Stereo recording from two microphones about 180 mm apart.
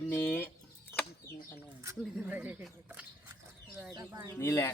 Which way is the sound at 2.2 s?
10° right (ahead or behind).